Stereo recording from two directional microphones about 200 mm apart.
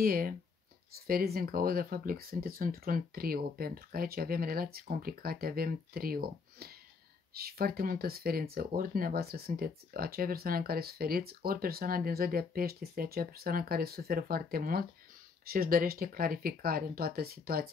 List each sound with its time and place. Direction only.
0.0 s speech: 45° right (ahead or behind)